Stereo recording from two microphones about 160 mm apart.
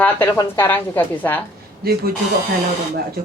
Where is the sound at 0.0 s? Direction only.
10° left (ahead or behind).